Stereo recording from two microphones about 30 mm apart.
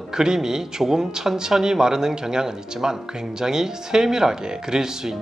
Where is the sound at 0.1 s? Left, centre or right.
Right.